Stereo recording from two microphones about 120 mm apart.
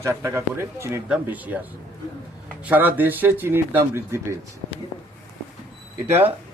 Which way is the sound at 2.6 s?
15° right (ahead or behind).